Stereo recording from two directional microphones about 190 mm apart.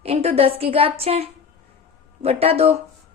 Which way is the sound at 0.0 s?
30° right (ahead or behind).